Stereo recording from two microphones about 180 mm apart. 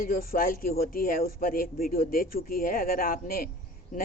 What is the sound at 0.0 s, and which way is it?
Speech, 55° left (ahead or behind).